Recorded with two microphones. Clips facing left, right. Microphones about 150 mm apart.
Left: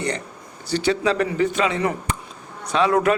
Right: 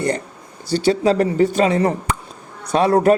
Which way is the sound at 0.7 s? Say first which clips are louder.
Right 4 dB; 40° right (ahead or behind).